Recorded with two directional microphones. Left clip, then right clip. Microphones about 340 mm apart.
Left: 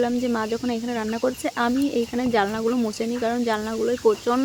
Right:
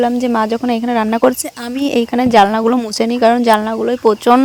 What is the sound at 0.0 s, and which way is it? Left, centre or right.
Speech, right.